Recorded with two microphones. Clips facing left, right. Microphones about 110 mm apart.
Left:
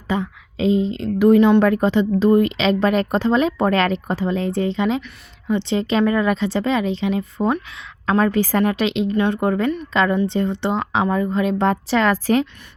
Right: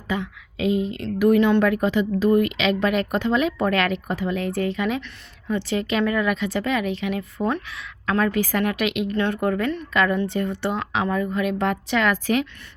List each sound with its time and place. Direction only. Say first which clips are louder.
0.1 s a woman's voice: left 4 dB; 30° left (ahead or behind)
1.5 s a woman's voice: left 4 dB; 35° left (ahead or behind)